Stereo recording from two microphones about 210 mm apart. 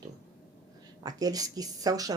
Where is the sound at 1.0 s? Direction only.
15° right (ahead or behind).